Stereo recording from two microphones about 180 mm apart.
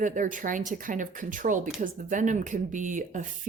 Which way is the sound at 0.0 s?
45° right (ahead or behind).